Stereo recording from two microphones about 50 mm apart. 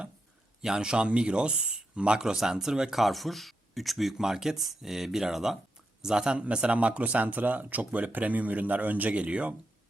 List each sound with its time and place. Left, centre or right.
0.6 s speech: centre
3.0 s speech: centre; by 9.6 s right